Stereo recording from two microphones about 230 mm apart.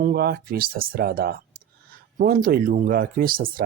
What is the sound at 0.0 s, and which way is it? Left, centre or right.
Speech, right.